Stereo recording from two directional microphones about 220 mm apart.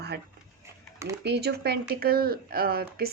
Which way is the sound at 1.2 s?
50° right (ahead or behind).